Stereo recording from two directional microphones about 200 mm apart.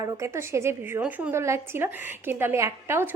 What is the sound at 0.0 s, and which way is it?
A woman's voice, 15° right (ahead or behind).